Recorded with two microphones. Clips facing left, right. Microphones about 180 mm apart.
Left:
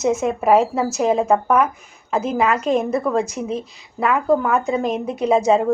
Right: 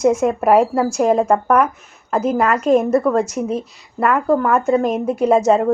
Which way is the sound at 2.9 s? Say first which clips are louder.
Right 5 dB; 10° left (ahead or behind).